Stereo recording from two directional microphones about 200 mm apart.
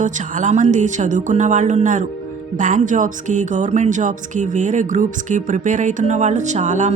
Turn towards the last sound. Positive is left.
turn(degrees=-35)  # may be behind; listen again after turning